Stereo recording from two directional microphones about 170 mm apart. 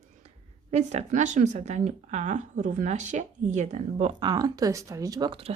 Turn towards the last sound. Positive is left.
turn(degrees=-30)  # may be behind; listen again after turning